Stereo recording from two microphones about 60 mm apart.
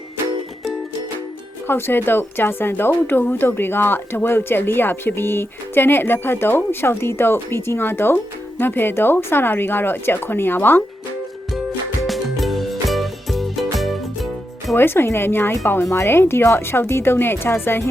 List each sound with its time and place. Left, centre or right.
1.6 s a woman's voice: left
12.0 s music: centre
14.8 s a woman's voice: left